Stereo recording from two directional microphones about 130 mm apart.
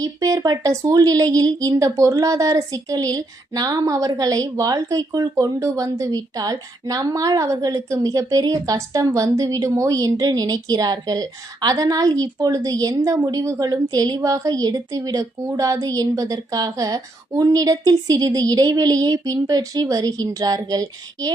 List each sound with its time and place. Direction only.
0.0 s speech: 25° right (ahead or behind)